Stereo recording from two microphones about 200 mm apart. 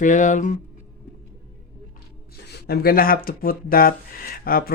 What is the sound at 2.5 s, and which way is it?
Speech, 50° left (ahead or behind).